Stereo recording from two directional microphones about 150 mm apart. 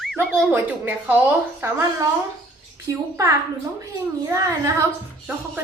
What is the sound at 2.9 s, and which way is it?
Speech, 20° right (ahead or behind).